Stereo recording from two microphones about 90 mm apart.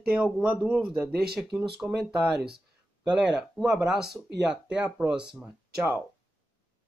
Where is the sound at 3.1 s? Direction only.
15° right (ahead or behind).